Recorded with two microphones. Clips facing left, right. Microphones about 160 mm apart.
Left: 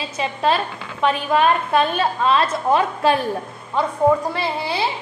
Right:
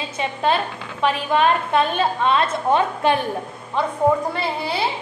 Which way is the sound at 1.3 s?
25° right (ahead or behind).